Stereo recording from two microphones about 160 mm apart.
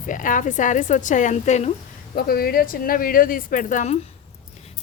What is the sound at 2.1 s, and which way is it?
A woman's voice, 70° left (ahead or behind).